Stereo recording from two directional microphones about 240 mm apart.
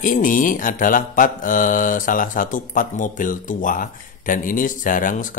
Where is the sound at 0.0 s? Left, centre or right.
Left.